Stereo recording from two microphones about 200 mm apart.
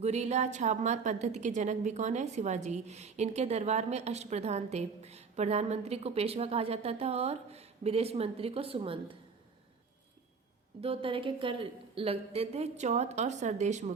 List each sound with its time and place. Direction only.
0.0 s a woman's voice: 35° right (ahead or behind)
10.8 s a woman's voice: 30° right (ahead or behind)